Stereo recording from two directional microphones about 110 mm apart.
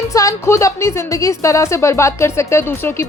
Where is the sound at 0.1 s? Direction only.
30° left (ahead or behind).